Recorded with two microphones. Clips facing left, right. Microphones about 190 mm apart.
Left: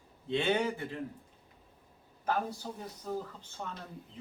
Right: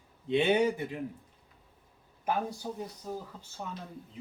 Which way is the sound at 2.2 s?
15° right (ahead or behind).